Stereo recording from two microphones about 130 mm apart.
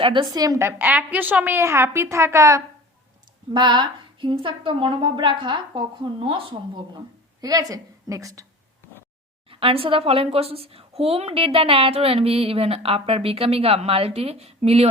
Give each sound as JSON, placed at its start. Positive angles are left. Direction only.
{"t": 0.0, "sound": "a woman's voice", "side_deg": -40}
{"t": 0.8, "sound": "a woman's voice", "side_deg": -10}
{"t": 3.5, "sound": "a woman's voice", "side_deg": -35}
{"t": 7.4, "sound": "a woman's voice", "side_deg": -30}
{"t": 9.5, "sound": "a woman's voice", "side_deg": -45}